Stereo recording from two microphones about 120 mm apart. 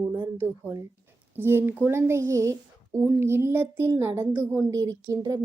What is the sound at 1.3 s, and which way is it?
Speech, 20° right (ahead or behind).